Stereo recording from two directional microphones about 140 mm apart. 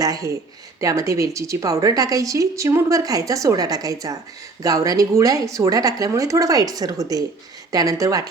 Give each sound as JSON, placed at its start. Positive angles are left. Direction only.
{"t": 0.0, "sound": "a woman's voice", "side_deg": -25}